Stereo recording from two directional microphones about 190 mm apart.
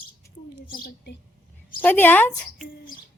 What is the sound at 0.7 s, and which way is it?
Speech, 50° left (ahead or behind).